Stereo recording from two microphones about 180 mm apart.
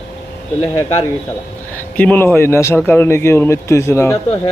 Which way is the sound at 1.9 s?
10° left (ahead or behind).